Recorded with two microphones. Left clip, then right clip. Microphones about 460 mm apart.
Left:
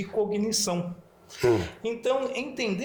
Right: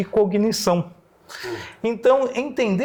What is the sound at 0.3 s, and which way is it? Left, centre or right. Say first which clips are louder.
Speech: right 8 dB; right.